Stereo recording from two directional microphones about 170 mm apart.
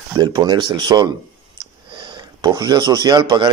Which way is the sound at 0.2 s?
25° right (ahead or behind).